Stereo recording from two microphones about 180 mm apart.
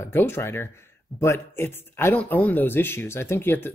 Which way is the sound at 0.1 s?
10° left (ahead or behind).